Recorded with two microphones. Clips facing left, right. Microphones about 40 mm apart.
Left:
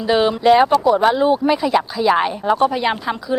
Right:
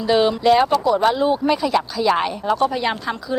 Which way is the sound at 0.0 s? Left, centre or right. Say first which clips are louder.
Left 1 dB; centre.